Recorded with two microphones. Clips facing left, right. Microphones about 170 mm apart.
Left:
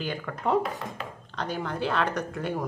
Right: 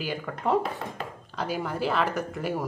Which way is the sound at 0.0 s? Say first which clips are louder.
Even; 5° right (ahead or behind).